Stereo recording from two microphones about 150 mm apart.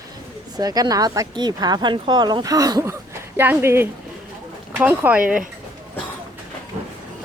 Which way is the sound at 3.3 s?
15° right (ahead or behind).